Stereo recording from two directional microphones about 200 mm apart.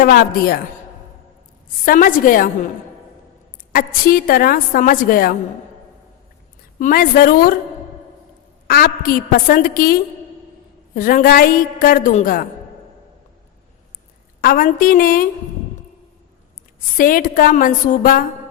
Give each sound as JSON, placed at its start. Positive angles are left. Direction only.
{"t": 0.0, "sound": "a woman's voice", "side_deg": 50}
{"t": 1.8, "sound": "a woman's voice", "side_deg": 45}
{"t": 3.7, "sound": "a woman's voice", "side_deg": 45}
{"t": 6.7, "sound": "a woman's voice", "side_deg": 40}
{"t": 8.6, "sound": "a woman's voice", "side_deg": 45}
{"t": 14.4, "sound": "a woman's voice", "side_deg": 45}
{"t": 17.0, "sound": "a woman's voice", "side_deg": 45}